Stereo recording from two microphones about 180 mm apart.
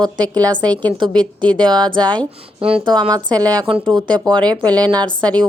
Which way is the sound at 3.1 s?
20° right (ahead or behind).